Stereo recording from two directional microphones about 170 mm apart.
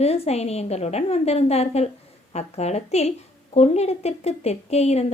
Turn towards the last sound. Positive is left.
turn(degrees=40)  # may be behind; listen again after turning